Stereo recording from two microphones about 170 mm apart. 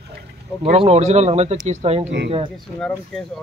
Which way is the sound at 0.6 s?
35° right (ahead or behind).